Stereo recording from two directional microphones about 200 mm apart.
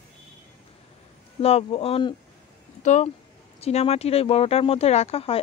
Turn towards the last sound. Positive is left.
turn(degrees=30)  # may be behind; listen again after turning